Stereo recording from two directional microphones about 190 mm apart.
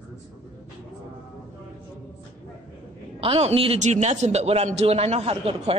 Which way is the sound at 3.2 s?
30° right (ahead or behind).